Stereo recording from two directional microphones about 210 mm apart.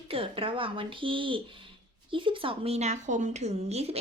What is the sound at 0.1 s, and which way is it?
Speech, 25° right (ahead or behind).